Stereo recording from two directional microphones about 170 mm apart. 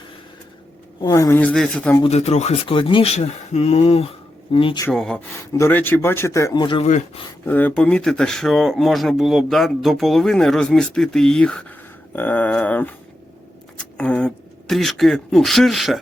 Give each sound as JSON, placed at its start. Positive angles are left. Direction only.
{"t": 0.9, "sound": "speech", "side_deg": 20}
{"t": 1.4, "sound": "speech", "side_deg": 5}
{"t": 2.0, "sound": "speech", "side_deg": 40}
{"t": 4.9, "sound": "speech", "side_deg": 5}
{"t": 6.8, "sound": "speech", "side_deg": 45}
{"t": 7.4, "sound": "speech", "side_deg": 10}
{"t": 13.9, "sound": "speech", "side_deg": 5}